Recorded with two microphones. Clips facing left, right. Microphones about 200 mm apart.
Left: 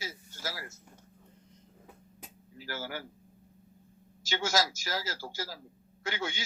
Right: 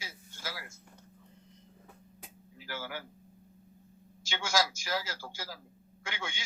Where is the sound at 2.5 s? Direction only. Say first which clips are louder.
Left 2 dB; 40° left (ahead or behind).